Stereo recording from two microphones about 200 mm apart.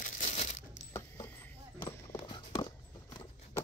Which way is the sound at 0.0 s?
35° left (ahead or behind).